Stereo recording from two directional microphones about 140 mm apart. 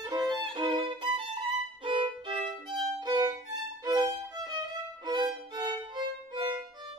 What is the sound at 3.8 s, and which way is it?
Music, 30° right (ahead or behind).